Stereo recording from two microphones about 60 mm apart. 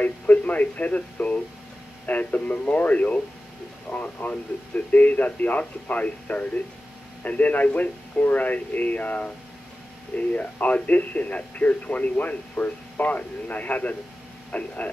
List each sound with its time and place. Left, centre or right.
0.0 s speech: left